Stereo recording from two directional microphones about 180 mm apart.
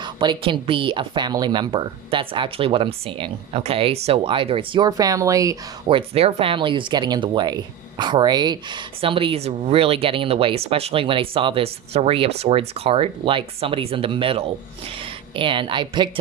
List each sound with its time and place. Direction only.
0.0 s a woman's voice: 25° right (ahead or behind)
6.0 s a woman's voice: 30° right (ahead or behind)